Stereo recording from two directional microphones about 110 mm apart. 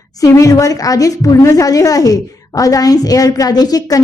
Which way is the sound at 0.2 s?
30° left (ahead or behind).